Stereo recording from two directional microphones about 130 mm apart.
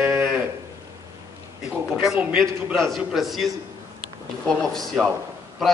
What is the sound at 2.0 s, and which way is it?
A man's voice, 5° right (ahead or behind).